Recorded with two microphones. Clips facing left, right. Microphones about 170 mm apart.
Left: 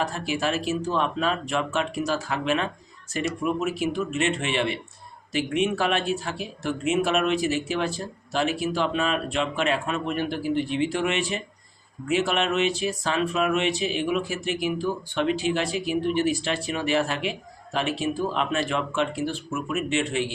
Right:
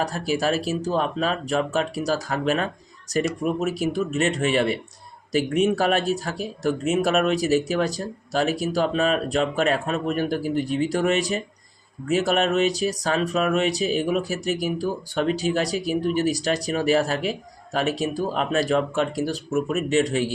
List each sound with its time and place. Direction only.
0.0 s speech: 40° right (ahead or behind)